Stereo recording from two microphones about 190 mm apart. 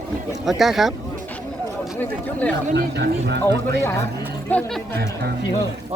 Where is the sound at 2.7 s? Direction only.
60° right (ahead or behind).